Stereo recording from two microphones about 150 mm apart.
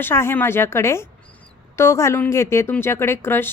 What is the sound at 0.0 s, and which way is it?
A woman's voice, 15° left (ahead or behind).